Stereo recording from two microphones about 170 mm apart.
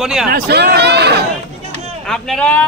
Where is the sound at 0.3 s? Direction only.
70° right (ahead or behind).